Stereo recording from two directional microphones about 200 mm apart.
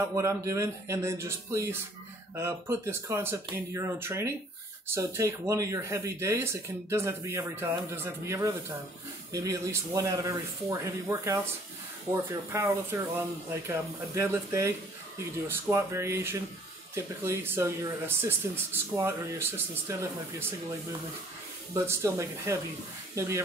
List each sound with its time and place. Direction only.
0.1 s speech: 15° right (ahead or behind)
12.5 s speech: 15° right (ahead or behind)
21.7 s speech: 15° right (ahead or behind)